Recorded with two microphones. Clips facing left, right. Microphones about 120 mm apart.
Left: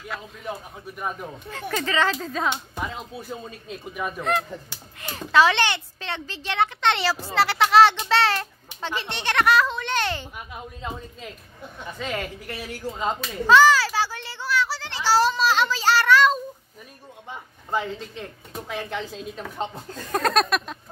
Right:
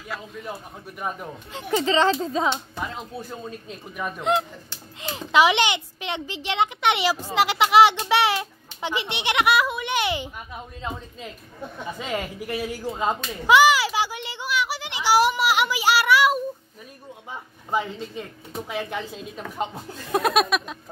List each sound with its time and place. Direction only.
1.5 s speech: 15° right (ahead or behind)
2.0 s speech: 30° right (ahead or behind)
2.9 s speech: centre (ahead or behind)
4.2 s a woman's voice: 20° right (ahead or behind)
12.0 s a woman's voice: 15° right (ahead or behind)
13.5 s a sound: 15° right (ahead or behind)
17.6 s a woman's voice: 10° right (ahead or behind)